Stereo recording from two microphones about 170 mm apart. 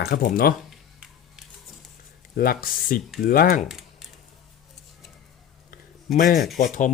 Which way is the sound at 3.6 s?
Centre (ahead or behind).